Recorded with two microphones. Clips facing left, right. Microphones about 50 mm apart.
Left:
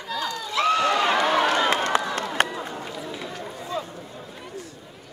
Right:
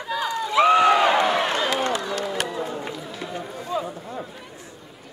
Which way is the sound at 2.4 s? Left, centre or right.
Left.